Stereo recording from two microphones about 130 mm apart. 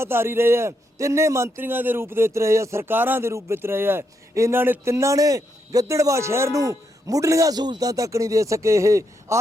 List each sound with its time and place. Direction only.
0.0 s a man's voice: 20° right (ahead or behind)